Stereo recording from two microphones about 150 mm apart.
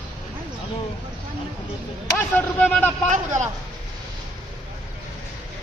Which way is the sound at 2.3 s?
10° left (ahead or behind).